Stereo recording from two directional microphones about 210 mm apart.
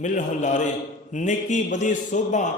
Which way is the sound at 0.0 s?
35° left (ahead or behind).